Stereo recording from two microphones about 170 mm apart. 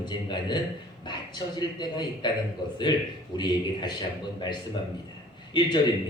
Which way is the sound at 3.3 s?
25° left (ahead or behind).